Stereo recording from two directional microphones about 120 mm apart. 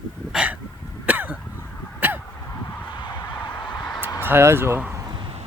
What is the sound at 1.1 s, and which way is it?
Cough, 15° right (ahead or behind).